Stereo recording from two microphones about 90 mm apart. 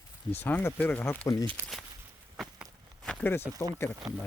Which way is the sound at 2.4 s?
Centre (ahead or behind).